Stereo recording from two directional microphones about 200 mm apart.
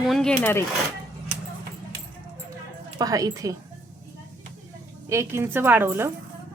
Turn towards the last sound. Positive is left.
turn(degrees=-10)  # may be behind; listen again after turning